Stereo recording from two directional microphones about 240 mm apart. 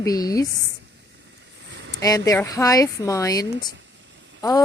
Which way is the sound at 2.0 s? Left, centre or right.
Centre.